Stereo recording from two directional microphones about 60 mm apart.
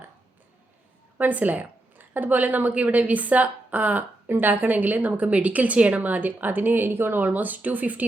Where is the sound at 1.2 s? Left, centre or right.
Right.